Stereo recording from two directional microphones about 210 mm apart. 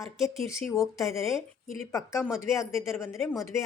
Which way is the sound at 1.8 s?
15° left (ahead or behind).